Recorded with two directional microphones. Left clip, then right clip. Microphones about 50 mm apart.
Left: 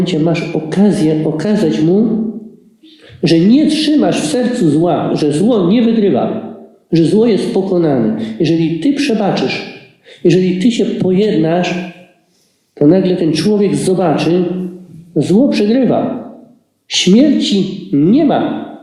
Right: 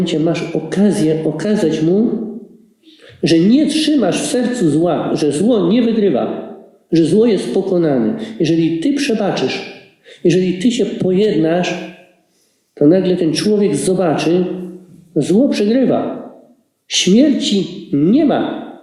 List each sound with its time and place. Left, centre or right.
0.2 s speech: right
3.2 s speech: right
12.7 s speech: right